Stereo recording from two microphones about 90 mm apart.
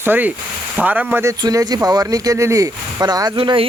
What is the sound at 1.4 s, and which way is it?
Speech, 45° right (ahead or behind).